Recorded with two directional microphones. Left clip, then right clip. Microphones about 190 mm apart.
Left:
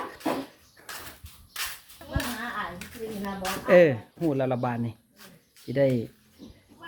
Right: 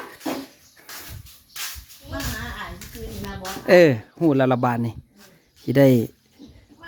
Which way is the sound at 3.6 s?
40° right (ahead or behind).